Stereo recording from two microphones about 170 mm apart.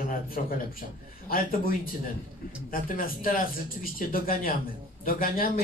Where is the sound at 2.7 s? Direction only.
55° left (ahead or behind).